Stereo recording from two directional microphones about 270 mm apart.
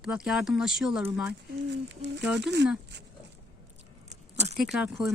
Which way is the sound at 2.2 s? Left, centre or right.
Centre.